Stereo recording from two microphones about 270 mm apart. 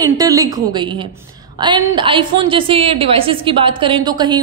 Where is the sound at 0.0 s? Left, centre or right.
Centre.